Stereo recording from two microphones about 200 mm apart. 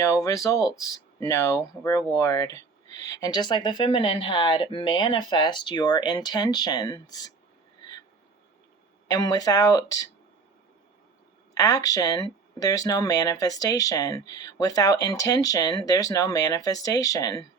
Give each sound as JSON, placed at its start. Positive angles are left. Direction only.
{"t": 0.0, "sound": "speech", "side_deg": 15}
{"t": 9.0, "sound": "speech", "side_deg": 20}
{"t": 11.5, "sound": "speech", "side_deg": 15}